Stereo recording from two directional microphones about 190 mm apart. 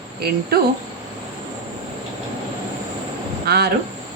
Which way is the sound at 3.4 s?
55° right (ahead or behind).